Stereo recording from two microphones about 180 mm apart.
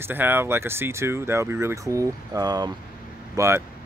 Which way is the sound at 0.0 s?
10° right (ahead or behind).